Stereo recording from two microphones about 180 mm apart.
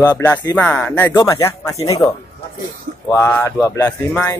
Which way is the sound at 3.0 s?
15° left (ahead or behind).